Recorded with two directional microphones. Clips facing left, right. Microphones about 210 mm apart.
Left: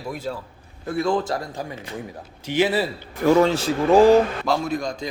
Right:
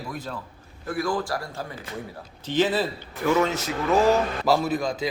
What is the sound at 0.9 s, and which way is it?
A man's voice, 25° left (ahead or behind).